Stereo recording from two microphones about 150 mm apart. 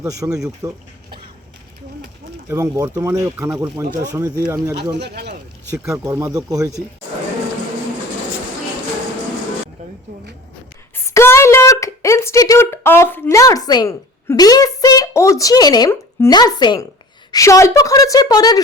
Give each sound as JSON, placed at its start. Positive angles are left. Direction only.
{"t": 0.0, "sound": "speech", "side_deg": -20}
{"t": 2.5, "sound": "speech", "side_deg": -20}
{"t": 5.0, "sound": "speech", "side_deg": -90}
{"t": 5.7, "sound": "speech", "side_deg": -20}
{"t": 10.9, "sound": "a woman's voice", "side_deg": 15}